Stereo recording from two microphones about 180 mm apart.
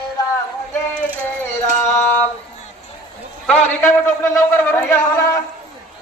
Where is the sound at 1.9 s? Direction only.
10° left (ahead or behind).